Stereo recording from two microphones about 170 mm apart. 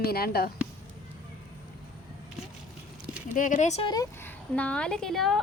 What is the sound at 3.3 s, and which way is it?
Speech, 50° left (ahead or behind).